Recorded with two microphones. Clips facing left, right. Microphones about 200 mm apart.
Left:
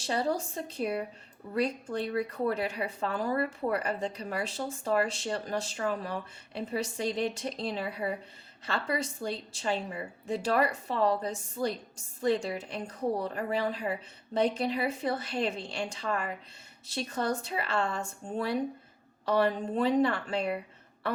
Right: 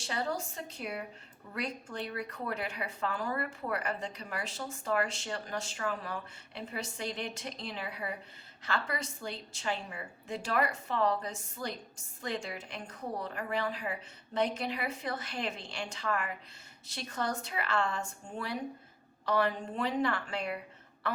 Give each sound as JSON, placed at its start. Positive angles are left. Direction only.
{"t": 0.1, "sound": "a woman's voice", "side_deg": 35}